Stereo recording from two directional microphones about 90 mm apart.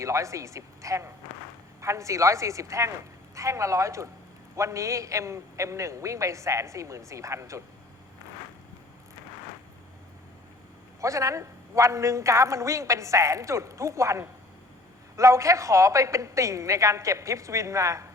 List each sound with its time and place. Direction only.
0.0 s a man's voice: 35° right (ahead or behind)
11.0 s a man's voice: 35° right (ahead or behind)